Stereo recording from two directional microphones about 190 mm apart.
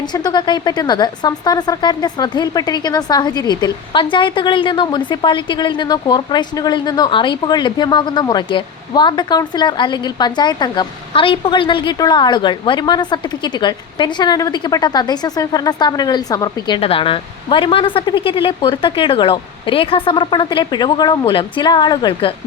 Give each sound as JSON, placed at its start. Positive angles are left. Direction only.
{"t": 0.0, "sound": "speech", "side_deg": 20}